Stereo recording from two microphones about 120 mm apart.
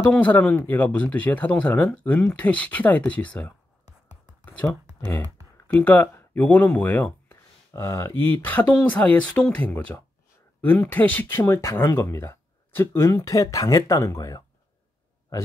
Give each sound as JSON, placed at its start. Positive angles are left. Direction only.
{"t": 0.1, "sound": "speech", "side_deg": 10}
{"t": 4.1, "sound": "a sound", "side_deg": 15}
{"t": 4.6, "sound": "speech", "side_deg": 20}
{"t": 7.7, "sound": "speech", "side_deg": 25}